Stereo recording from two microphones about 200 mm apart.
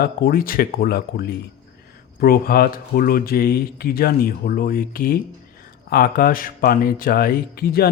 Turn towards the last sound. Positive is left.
turn(degrees=50)  # may be behind; listen again after turning